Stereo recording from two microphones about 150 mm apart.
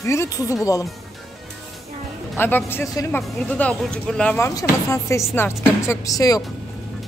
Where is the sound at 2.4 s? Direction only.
15° left (ahead or behind).